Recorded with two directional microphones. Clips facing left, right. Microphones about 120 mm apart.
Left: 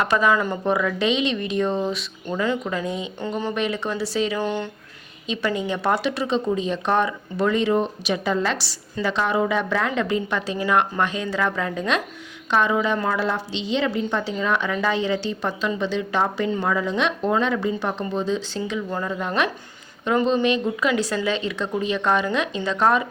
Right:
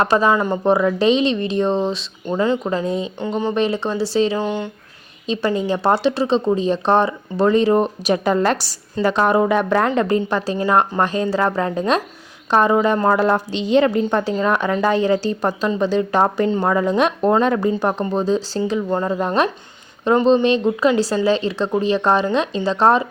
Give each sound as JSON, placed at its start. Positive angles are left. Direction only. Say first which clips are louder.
{"t": 0.0, "sound": "speech", "louder": "right 4 dB", "side_deg": -30}
{"t": 3.2, "sound": "speech", "louder": "right 5 dB", "side_deg": -20}
{"t": 3.5, "sound": "speech", "louder": "right 5 dB", "side_deg": -30}
{"t": 4.4, "sound": "speech", "louder": "right 3 dB", "side_deg": -15}
{"t": 5.2, "sound": "a woman's voice", "louder": "right 5 dB", "side_deg": -35}